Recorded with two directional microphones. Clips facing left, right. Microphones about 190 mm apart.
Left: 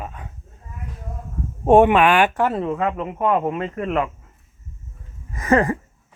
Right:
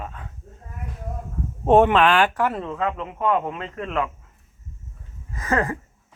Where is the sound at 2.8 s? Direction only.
45° left (ahead or behind).